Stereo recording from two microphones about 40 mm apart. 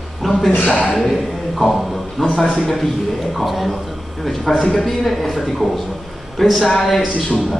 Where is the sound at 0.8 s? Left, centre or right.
Centre.